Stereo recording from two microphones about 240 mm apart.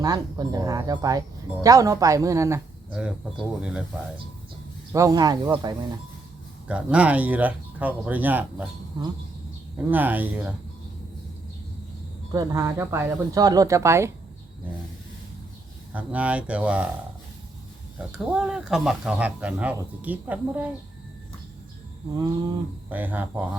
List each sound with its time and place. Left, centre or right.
0.0 s speech: centre
4.9 s speech: centre
6.7 s speech: centre
9.7 s speech: centre
12.3 s speech: centre
15.9 s speech: centre
17.9 s speech: centre
22.1 s speech: centre